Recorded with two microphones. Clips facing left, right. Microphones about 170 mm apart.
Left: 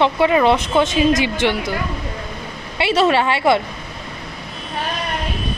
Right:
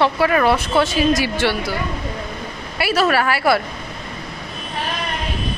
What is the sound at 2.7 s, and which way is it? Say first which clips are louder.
Speech: left 2 dB; 25° left (ahead or behind).